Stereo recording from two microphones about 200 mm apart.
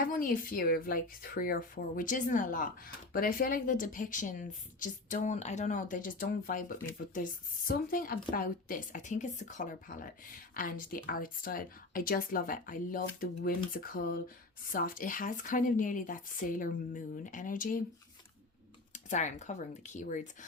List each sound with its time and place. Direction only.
0.1 s a woman's voice: 45° left (ahead or behind)
18.9 s a woman's voice: 35° left (ahead or behind)